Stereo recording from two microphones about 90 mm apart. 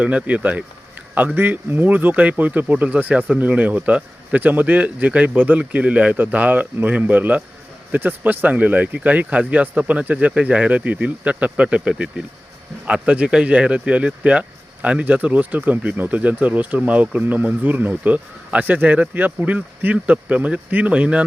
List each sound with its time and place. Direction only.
0.0 s speech: 15° right (ahead or behind)